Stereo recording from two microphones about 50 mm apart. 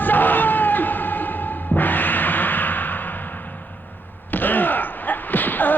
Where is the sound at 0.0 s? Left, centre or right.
Left.